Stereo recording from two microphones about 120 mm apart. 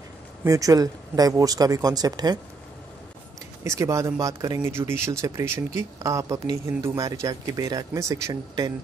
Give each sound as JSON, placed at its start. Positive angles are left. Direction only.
{"t": 0.5, "sound": "speech", "side_deg": -30}
{"t": 3.6, "sound": "speech", "side_deg": -25}